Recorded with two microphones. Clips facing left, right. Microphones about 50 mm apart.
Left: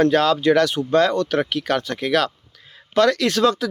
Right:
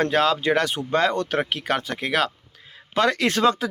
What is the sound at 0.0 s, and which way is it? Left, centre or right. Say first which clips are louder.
Speech: left 4 dB; centre.